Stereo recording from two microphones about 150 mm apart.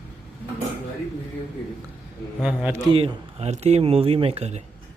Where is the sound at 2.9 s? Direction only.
40° right (ahead or behind).